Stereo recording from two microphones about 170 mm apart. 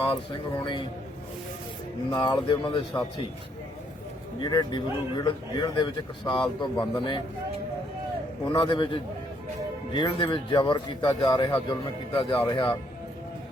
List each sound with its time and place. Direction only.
0.1 s speech: 30° left (ahead or behind)
2.0 s speech: 25° left (ahead or behind)
4.4 s speech: 25° left (ahead or behind)
8.4 s speech: 25° left (ahead or behind)